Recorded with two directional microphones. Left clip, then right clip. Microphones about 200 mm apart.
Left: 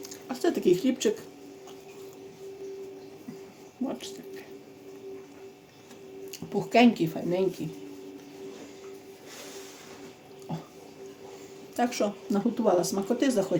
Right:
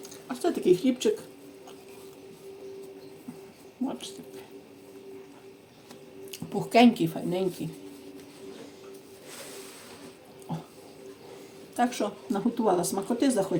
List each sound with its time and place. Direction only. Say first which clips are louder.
0.1 s speech: left 1 dB; 25° left (ahead or behind)
3.8 s a sound: even; 15° left (ahead or behind)
6.3 s speech: right 1 dB; 5° left (ahead or behind)
11.8 s speech: even; 15° left (ahead or behind)